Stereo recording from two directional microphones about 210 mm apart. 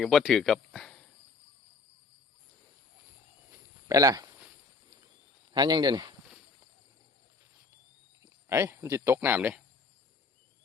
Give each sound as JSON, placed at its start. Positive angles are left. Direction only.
{"t": 0.0, "sound": "speech", "side_deg": 0}
{"t": 3.5, "sound": "a sound", "side_deg": -15}
{"t": 5.5, "sound": "speech", "side_deg": -20}
{"t": 8.2, "sound": "speech", "side_deg": -15}